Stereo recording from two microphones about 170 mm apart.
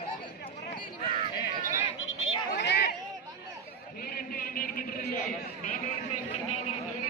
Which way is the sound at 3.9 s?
60° left (ahead or behind).